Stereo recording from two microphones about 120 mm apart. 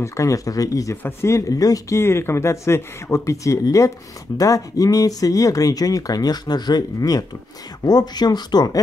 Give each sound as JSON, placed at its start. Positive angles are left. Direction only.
{"t": 0.0, "sound": "speech", "side_deg": 25}